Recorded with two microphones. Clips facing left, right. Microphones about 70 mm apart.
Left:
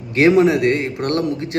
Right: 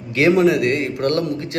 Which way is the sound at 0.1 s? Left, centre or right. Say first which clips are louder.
Left 2 dB; left.